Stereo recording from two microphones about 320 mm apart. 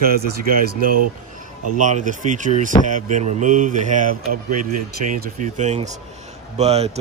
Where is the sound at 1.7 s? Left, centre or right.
Right.